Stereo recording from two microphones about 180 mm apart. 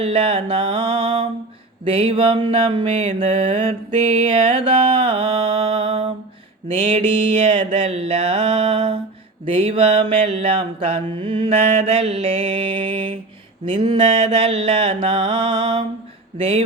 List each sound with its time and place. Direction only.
0.0 s mantra: 30° right (ahead or behind)
7.4 s mantra: 40° right (ahead or behind)